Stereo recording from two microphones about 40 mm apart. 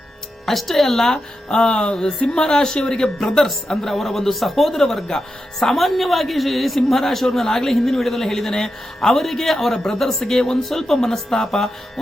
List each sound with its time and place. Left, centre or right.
0.4 s speech: centre
1.5 s speech: left